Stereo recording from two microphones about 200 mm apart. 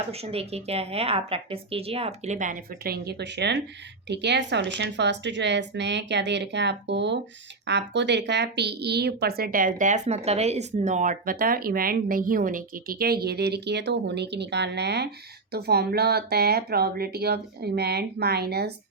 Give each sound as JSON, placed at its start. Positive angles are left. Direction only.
{"t": 0.1, "sound": "a woman's voice", "side_deg": -30}